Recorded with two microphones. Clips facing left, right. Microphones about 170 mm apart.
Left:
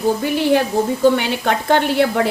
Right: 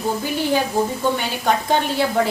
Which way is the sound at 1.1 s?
65° left (ahead or behind).